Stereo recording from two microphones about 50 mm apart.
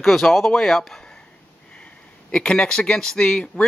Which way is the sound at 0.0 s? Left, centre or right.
Centre.